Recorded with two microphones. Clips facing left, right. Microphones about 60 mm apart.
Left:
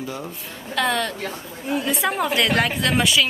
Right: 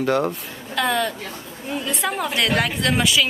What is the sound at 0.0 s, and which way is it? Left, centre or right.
Music, right.